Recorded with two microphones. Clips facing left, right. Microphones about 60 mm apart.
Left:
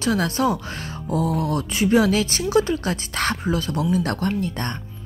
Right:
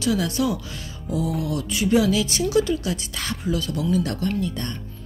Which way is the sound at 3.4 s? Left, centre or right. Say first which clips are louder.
Left 2 dB; left.